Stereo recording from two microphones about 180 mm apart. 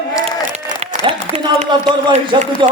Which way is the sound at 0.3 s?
35° right (ahead or behind).